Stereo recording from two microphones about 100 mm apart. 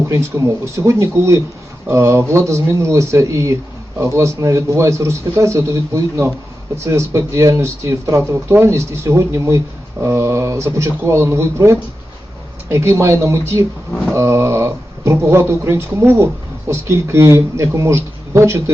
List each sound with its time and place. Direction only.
0.1 s speech: 30° right (ahead or behind)